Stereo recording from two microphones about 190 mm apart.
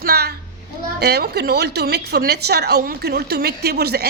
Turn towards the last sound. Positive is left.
turn(degrees=-55)  # may be behind; listen again after turning